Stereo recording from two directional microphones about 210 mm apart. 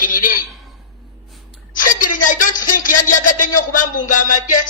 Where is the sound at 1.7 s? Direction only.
40° left (ahead or behind).